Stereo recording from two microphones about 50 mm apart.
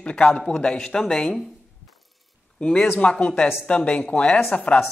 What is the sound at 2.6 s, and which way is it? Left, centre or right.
Speech, centre.